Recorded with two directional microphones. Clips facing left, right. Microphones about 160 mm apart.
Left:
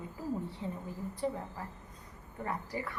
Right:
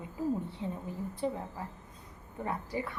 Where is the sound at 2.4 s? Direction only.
20° right (ahead or behind).